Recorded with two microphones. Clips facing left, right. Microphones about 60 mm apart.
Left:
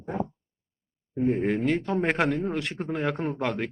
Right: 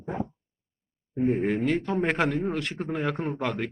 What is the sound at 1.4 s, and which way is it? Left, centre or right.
Speech, centre.